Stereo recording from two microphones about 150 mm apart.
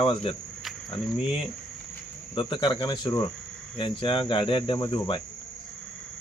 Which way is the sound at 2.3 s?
30° left (ahead or behind).